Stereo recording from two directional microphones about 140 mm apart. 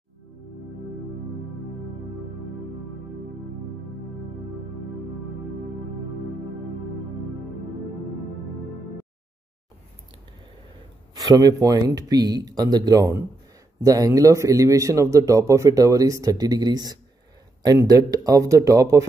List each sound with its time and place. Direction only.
11.1 s a man's voice: 25° right (ahead or behind)